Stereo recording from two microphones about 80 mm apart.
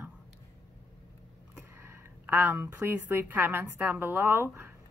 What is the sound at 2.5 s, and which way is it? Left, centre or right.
A woman's voice, right.